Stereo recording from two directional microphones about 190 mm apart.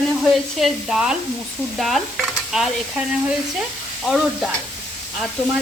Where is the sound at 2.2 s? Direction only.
Centre (ahead or behind).